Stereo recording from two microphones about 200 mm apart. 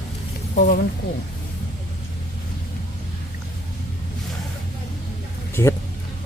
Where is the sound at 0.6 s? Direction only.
40° left (ahead or behind).